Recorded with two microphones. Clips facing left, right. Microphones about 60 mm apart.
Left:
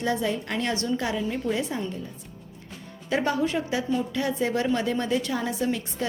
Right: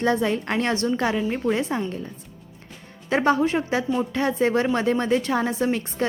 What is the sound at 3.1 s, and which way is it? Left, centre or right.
A woman's voice, right.